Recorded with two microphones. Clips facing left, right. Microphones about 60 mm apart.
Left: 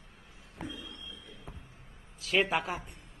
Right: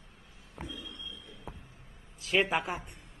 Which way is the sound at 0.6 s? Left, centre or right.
Centre.